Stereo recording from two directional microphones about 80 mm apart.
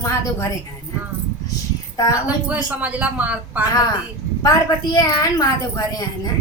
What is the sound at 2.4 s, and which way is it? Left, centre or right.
Speech, centre.